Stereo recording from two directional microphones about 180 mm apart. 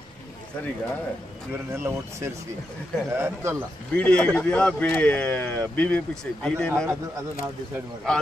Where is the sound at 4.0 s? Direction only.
5° left (ahead or behind).